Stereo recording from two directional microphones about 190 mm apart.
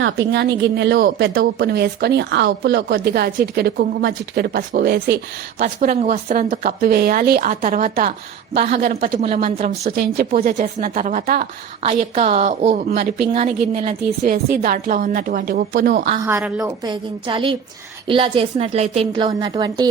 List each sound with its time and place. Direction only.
0.0 s a woman's voice: 75° right (ahead or behind); by 8.1 s 50° right (ahead or behind)
8.5 s a woman's voice: 30° right (ahead or behind)
9.6 s speech: 45° right (ahead or behind)
10.4 s speech: 40° right (ahead or behind)
11.8 s a woman's voice: 30° right (ahead or behind)
12.9 s a woman's voice: 55° right (ahead or behind)
13.3 s a woman's voice: 35° right (ahead or behind)
14.3 s speech: 55° right (ahead or behind)
16.2 s a woman's voice: 10° right (ahead or behind)